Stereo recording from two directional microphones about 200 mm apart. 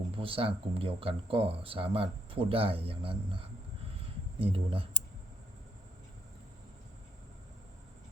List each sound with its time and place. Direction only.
0.2 s speech: 25° right (ahead or behind)